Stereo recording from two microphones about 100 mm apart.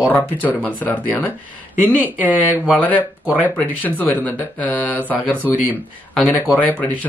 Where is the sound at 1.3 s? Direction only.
15° right (ahead or behind).